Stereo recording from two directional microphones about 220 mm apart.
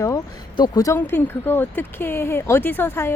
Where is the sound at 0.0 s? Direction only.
15° left (ahead or behind).